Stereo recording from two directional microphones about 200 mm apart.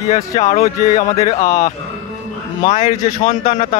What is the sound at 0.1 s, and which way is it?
Speech, 35° left (ahead or behind).